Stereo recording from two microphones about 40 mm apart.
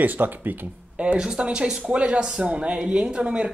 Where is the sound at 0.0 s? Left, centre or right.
Right.